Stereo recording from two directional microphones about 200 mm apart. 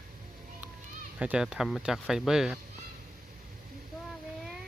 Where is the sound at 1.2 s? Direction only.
5° right (ahead or behind).